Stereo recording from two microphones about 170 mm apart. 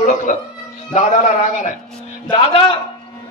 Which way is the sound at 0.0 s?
50° left (ahead or behind).